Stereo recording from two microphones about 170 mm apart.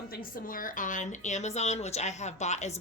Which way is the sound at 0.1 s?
55° left (ahead or behind).